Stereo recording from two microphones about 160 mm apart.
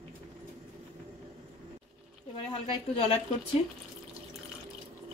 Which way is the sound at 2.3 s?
35° left (ahead or behind).